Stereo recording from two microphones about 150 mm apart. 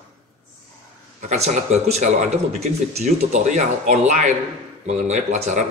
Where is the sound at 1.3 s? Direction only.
50° right (ahead or behind).